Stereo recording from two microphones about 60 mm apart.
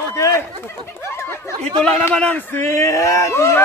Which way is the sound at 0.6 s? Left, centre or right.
Left.